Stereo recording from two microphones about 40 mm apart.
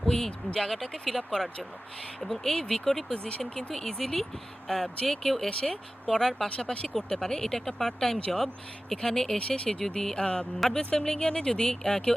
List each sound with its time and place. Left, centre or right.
0.0 s speech: centre